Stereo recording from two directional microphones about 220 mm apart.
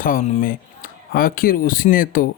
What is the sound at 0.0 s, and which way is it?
Speech, 35° left (ahead or behind).